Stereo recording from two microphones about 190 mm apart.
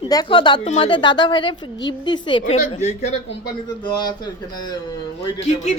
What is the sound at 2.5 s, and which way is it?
Speech, 35° left (ahead or behind).